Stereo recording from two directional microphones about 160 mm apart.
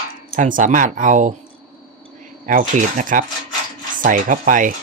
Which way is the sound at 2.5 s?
55° right (ahead or behind).